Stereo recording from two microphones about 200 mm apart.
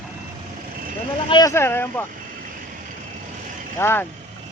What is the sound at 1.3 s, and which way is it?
Speech, 20° left (ahead or behind).